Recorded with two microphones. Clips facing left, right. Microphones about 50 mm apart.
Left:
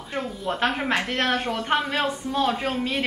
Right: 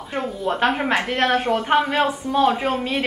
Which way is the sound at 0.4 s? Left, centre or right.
Centre.